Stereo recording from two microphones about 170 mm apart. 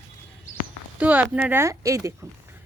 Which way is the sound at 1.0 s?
10° right (ahead or behind).